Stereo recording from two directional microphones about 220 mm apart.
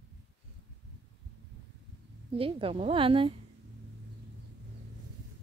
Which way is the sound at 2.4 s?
25° right (ahead or behind).